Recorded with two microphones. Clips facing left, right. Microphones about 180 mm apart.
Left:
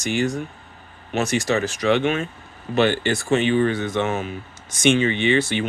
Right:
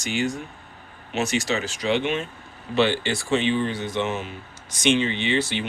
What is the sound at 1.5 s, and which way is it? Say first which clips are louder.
Speech: left 4 dB; 50° left (ahead or behind).